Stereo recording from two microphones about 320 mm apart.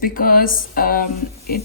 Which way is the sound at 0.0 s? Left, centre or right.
Left.